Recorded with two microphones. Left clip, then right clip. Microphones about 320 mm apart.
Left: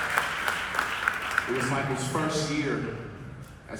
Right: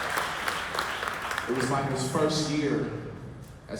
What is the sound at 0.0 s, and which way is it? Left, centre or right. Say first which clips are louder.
Applause: left 2 dB; right.